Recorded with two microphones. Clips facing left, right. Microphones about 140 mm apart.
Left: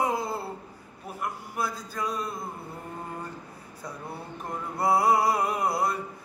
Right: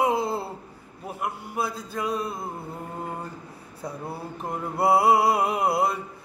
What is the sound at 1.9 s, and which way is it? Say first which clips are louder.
Mantra: right 5 dB; 25° right (ahead or behind).